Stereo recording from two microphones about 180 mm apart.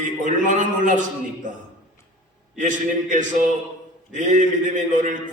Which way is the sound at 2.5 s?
45° right (ahead or behind).